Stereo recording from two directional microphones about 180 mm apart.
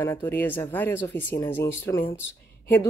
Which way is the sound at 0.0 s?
15° left (ahead or behind).